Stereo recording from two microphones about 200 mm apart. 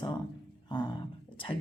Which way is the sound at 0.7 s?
20° left (ahead or behind).